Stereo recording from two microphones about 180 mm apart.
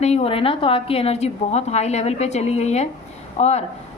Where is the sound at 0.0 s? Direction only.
35° left (ahead or behind).